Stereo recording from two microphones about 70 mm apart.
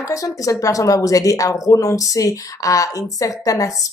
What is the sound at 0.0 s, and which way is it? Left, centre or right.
A woman's voice, left.